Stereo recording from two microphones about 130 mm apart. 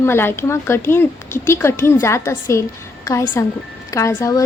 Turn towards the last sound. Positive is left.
turn(degrees=25)  # may be behind; listen again after turning